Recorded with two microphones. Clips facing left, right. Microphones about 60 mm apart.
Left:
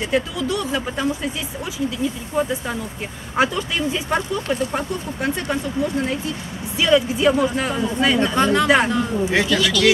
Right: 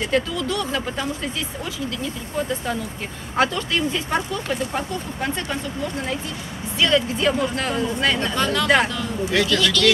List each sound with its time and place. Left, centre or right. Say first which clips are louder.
0.1 s speech: left 2 dB; centre
2.3 s speech: even; centre
6.8 s speech: left 3 dB; centre
8.4 s speech: left 6 dB; left
8.6 s speech: left 2 dB; centre
8.9 s speech: left 3 dB; left
9.5 s speech: left 1 dB; centre